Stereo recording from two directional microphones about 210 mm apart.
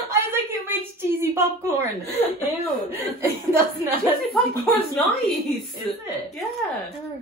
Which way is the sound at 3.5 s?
10° right (ahead or behind).